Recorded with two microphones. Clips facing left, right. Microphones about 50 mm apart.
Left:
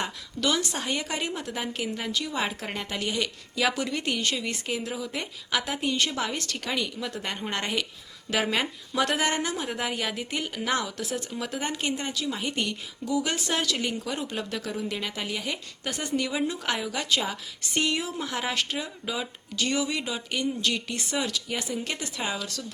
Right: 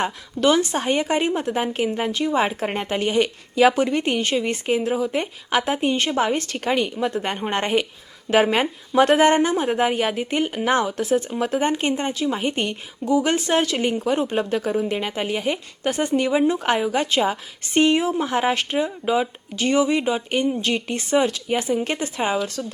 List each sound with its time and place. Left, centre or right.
0.0 s a woman's voice: right